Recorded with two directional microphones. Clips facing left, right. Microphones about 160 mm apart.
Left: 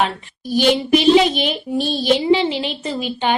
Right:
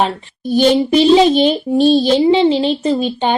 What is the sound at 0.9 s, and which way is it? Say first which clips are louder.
A woman's voice: right 1 dB; 30° right (ahead or behind).